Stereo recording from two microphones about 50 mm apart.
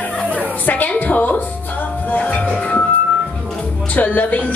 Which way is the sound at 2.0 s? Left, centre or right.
Left.